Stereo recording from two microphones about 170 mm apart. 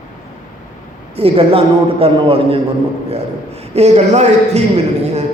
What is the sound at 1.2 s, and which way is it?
A man's voice, 35° right (ahead or behind).